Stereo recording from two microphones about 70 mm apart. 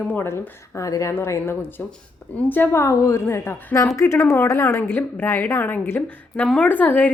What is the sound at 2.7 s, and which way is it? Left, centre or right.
A woman's voice, left.